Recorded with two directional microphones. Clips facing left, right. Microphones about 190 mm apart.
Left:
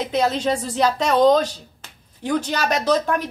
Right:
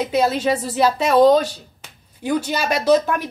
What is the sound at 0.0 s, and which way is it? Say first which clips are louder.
A woman's voice: right 2 dB; 10° right (ahead or behind).